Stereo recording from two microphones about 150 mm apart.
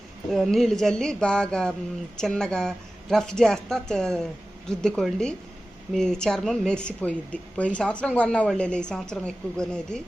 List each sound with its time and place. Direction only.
0.3 s a woman's voice: centre (ahead or behind)